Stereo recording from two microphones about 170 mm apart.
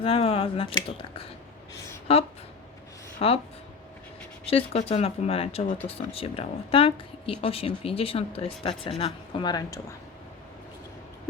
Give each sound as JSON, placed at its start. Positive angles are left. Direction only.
{"t": 0.0, "sound": "a woman's voice", "side_deg": 35}
{"t": 4.4, "sound": "a woman's voice", "side_deg": 35}